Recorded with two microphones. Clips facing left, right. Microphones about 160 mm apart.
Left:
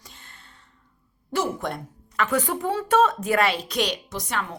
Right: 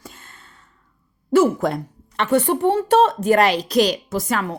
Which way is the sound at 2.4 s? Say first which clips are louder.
Right 8 dB; 65° right (ahead or behind).